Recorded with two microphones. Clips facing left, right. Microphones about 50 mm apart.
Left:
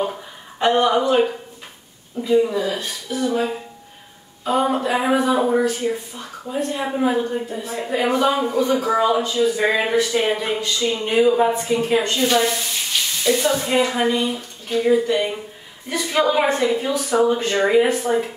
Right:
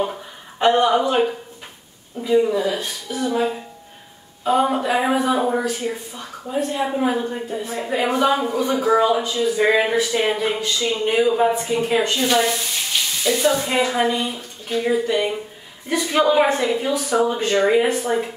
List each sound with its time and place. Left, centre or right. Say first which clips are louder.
0.0 s a sound: even; centre
2.2 s speech: even; centre
3.1 s a woman's voice: left 2 dB; centre
3.3 s a woman's voice: right 1 dB; centre
11.9 s a woman's voice: right 1 dB; centre
12.2 s a woman's voice: even; centre